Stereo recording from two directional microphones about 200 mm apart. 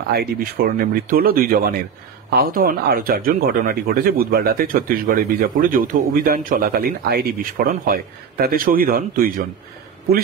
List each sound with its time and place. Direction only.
0.1 s speech: 50° right (ahead or behind)